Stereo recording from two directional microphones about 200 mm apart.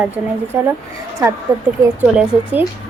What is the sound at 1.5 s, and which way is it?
Speech, 15° right (ahead or behind).